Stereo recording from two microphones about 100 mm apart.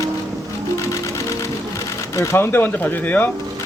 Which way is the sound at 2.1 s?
25° left (ahead or behind).